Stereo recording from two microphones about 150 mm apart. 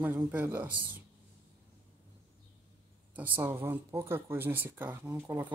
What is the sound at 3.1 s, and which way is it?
Speech, 10° right (ahead or behind).